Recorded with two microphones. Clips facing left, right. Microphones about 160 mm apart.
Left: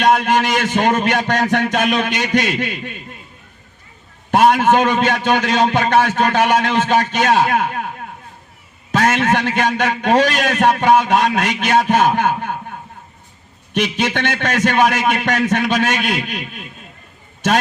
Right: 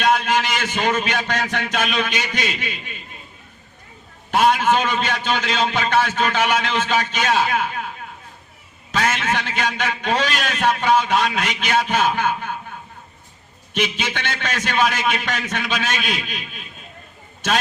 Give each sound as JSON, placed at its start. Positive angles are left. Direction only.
{"t": 0.0, "sound": "a man's voice", "side_deg": 60}
{"t": 4.3, "sound": "a man's voice", "side_deg": 55}
{"t": 14.0, "sound": "a man's voice", "side_deg": 60}